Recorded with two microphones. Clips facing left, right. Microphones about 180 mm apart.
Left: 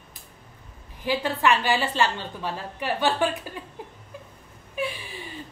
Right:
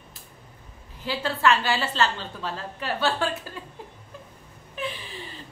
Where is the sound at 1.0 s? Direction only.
15° left (ahead or behind).